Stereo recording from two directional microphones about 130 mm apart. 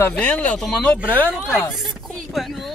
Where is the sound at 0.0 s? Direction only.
10° left (ahead or behind).